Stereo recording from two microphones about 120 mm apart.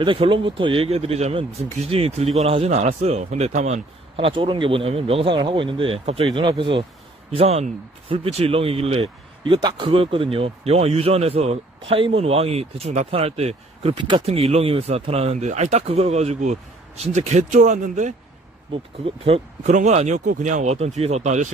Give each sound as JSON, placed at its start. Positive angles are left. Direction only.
{"t": 0.0, "sound": "speech", "side_deg": -45}
{"t": 4.3, "sound": "speech", "side_deg": -45}
{"t": 7.3, "sound": "speech", "side_deg": -60}
{"t": 9.0, "sound": "speech", "side_deg": -40}
{"t": 13.9, "sound": "speech", "side_deg": -40}
{"t": 14.5, "sound": "speech", "side_deg": -55}
{"t": 18.7, "sound": "speech", "side_deg": -50}
{"t": 19.7, "sound": "speech", "side_deg": -75}